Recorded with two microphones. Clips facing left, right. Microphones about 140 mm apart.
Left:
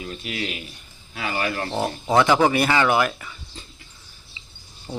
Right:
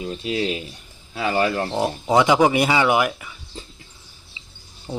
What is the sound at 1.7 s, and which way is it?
Speech, 15° right (ahead or behind).